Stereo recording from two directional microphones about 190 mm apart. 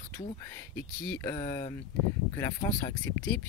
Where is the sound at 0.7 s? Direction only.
10° left (ahead or behind).